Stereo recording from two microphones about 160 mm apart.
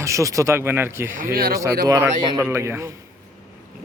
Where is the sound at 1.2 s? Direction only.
65° right (ahead or behind).